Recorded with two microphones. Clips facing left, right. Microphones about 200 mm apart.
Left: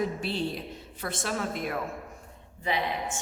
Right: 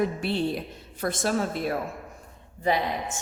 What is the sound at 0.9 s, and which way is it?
Speech, 40° right (ahead or behind).